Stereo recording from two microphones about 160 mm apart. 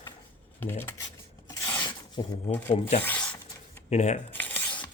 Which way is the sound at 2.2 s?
30° left (ahead or behind).